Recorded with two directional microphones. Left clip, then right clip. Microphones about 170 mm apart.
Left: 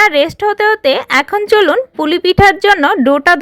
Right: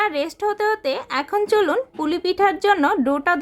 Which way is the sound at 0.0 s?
30° left (ahead or behind).